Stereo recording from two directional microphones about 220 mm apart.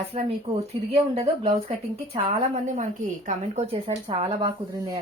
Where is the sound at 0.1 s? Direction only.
25° right (ahead or behind).